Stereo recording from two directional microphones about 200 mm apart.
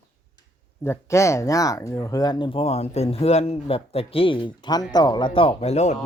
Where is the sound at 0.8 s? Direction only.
15° left (ahead or behind).